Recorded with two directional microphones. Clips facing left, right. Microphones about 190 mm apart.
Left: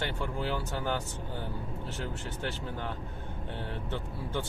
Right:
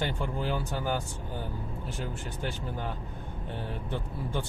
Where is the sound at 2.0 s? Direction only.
15° right (ahead or behind).